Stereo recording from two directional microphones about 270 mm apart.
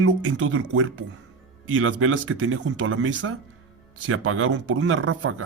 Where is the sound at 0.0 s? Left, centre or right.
Right.